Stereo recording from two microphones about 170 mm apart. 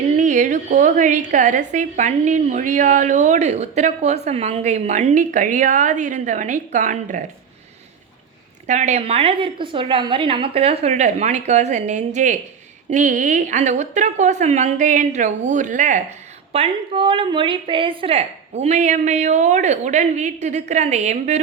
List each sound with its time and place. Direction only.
0.2 s a woman's voice: 45° right (ahead or behind)
8.6 s a woman's voice: 40° right (ahead or behind)